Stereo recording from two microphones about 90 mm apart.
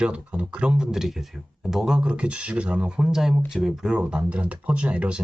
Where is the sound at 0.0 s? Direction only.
10° right (ahead or behind).